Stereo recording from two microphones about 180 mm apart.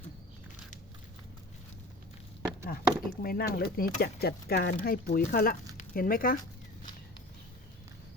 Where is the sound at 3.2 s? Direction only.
60° left (ahead or behind).